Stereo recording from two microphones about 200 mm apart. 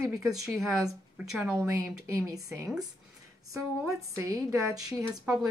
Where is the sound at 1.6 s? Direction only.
15° right (ahead or behind).